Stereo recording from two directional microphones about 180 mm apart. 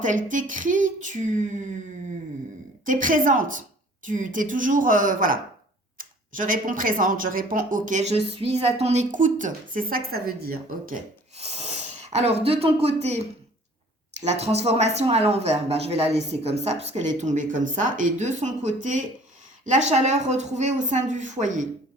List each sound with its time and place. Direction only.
0.0 s speech: 45° right (ahead or behind)
2.8 s speech: 45° right (ahead or behind)
11.3 s speech: 35° right (ahead or behind)
14.3 s speech: 35° right (ahead or behind)